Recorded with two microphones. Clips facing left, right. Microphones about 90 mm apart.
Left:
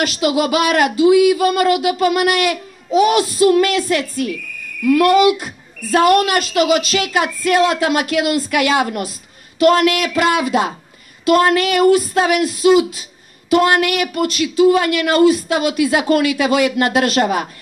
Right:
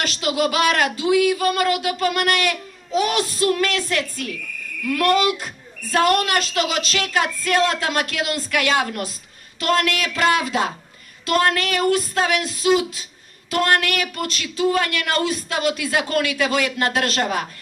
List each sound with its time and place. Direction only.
0.0 s speech: 5° left (ahead or behind)